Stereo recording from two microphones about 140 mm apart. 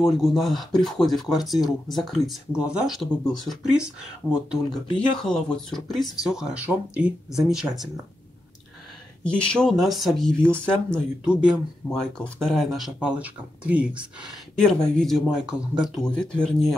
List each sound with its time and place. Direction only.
0.0 s speech: centre (ahead or behind)
4.9 s speech: 5° left (ahead or behind)
9.2 s speech: 5° left (ahead or behind)
11.2 s speech: 5° right (ahead or behind)
12.0 s speech: 5° left (ahead or behind)
14.2 s speech: 5° left (ahead or behind)